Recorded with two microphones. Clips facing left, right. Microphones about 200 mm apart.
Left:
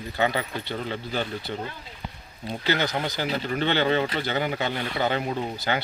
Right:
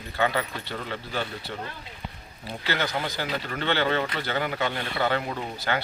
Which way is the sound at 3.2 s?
20° left (ahead or behind).